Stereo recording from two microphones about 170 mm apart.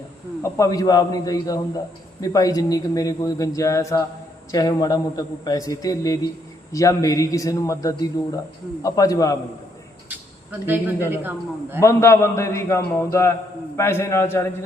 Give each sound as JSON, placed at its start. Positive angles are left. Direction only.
{"t": 0.4, "sound": "speech", "side_deg": 15}
{"t": 11.1, "sound": "a man's voice", "side_deg": -10}
{"t": 11.8, "sound": "a man's voice", "side_deg": 15}